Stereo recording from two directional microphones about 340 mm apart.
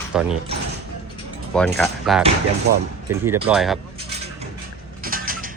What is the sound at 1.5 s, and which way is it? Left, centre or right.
Speech, centre.